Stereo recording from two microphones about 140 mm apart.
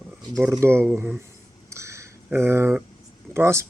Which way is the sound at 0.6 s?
20° right (ahead or behind).